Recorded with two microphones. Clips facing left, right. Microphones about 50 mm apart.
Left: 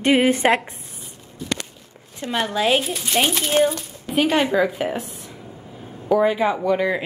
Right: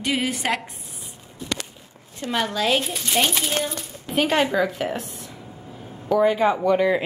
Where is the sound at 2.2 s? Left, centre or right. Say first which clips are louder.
Left 1 dB; left.